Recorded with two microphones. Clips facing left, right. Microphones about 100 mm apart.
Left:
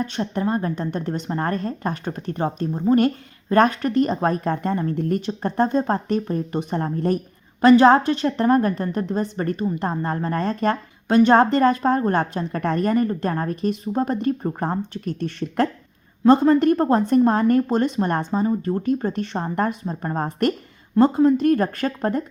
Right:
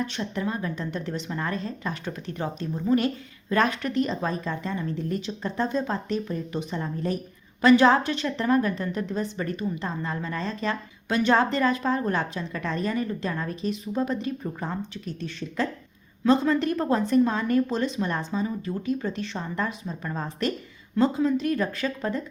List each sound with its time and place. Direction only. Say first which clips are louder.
0.0 s a woman's voice: left 5 dB; 45° left (ahead or behind)
7.6 s a woman's voice: left 5 dB; 45° left (ahead or behind); by 15.7 s 60° left (ahead or behind)
16.2 s a woman's voice: left 7 dB; 45° left (ahead or behind)